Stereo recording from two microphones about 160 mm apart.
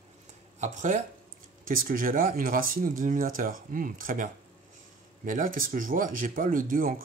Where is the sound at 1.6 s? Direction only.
60° right (ahead or behind).